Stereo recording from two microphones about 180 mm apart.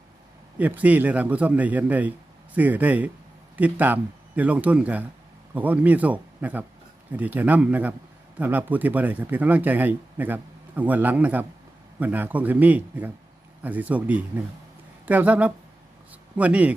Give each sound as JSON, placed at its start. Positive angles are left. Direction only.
{"t": 0.6, "sound": "speech", "side_deg": -10}